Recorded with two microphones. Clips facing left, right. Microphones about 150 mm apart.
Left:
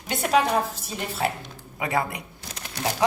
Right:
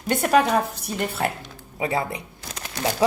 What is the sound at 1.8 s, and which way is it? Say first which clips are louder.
Speech: right 1 dB; 30° right (ahead or behind).